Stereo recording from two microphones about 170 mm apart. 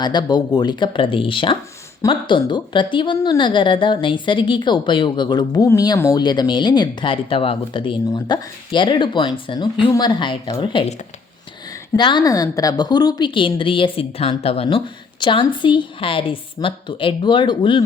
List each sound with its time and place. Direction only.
0.0 s a woman's voice: 25° left (ahead or behind)